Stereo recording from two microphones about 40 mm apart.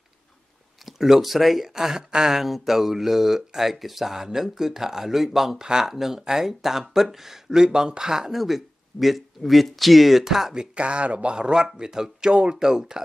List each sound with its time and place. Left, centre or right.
0.8 s speech: centre
5.6 s speech: centre
5.9 s speech: centre
8.4 s speech: centre
10.5 s speech: right